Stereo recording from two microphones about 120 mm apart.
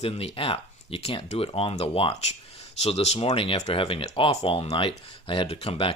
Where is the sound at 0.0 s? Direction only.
55° left (ahead or behind).